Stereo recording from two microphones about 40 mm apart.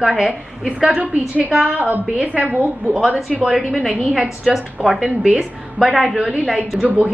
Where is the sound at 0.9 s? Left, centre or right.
Right.